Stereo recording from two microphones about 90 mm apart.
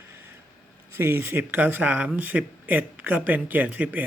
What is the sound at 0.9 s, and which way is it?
Speech, 25° right (ahead or behind).